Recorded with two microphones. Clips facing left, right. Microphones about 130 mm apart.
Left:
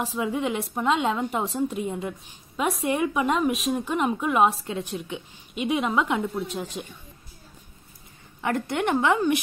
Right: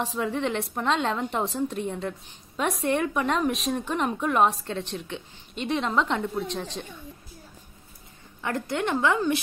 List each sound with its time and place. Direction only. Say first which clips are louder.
0.0 s a woman's voice: left 1 dB; 5° left (ahead or behind)
8.4 s a woman's voice: left 2 dB; 20° left (ahead or behind)